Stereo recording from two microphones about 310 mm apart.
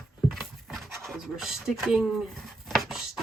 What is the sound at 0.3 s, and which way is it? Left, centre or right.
Pant, centre.